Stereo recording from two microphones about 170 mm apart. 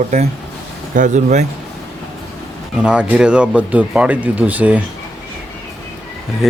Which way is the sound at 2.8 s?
5° right (ahead or behind).